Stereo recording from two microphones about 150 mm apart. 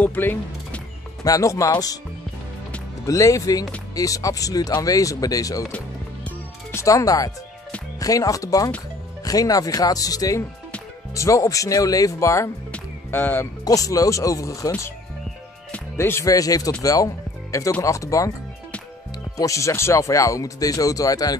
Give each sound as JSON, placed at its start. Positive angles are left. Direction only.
{"t": 0.0, "sound": "speech", "side_deg": 15}
{"t": 3.1, "sound": "speech", "side_deg": 20}
{"t": 6.2, "sound": "music", "side_deg": 20}
{"t": 8.0, "sound": "speech", "side_deg": 25}
{"t": 15.7, "sound": "music", "side_deg": 15}
{"t": 16.8, "sound": "speech", "side_deg": 25}
{"t": 19.3, "sound": "speech", "side_deg": 20}